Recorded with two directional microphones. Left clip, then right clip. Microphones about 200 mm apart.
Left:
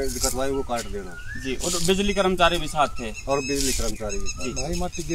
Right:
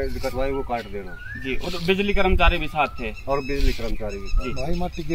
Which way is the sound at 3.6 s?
Centre (ahead or behind).